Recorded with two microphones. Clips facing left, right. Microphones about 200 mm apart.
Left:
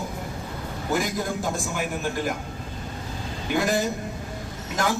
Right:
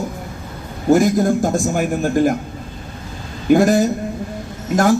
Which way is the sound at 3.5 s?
45° right (ahead or behind).